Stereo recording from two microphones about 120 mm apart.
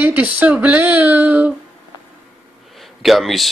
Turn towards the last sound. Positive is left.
turn(degrees=0)  # may be behind; listen again after turning